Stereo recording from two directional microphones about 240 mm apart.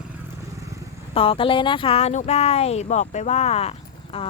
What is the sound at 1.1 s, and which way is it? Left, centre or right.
Speech, left.